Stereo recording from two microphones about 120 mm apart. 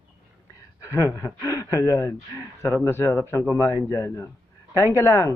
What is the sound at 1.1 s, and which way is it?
Speech, 25° left (ahead or behind).